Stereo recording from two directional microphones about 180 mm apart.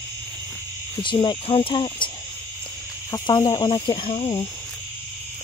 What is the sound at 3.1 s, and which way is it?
Speech, 25° left (ahead or behind).